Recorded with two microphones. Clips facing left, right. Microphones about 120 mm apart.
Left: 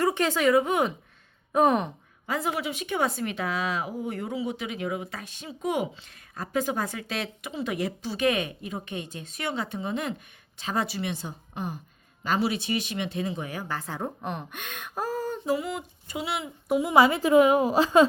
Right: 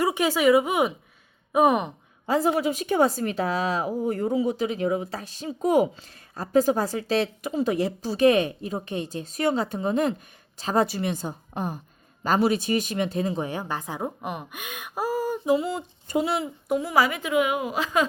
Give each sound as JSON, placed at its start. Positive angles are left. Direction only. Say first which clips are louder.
{"t": 0.0, "sound": "speech", "louder": "right 2 dB", "side_deg": -10}
{"t": 2.2, "sound": "a woman's voice", "louder": "right 7 dB", "side_deg": -30}
{"t": 15.5, "sound": "speech", "louder": "right 5 dB", "side_deg": -30}
{"t": 16.0, "sound": "a woman's voice", "louder": "right 8 dB", "side_deg": -45}
{"t": 16.8, "sound": "a woman's voice", "louder": "left 5 dB", "side_deg": 25}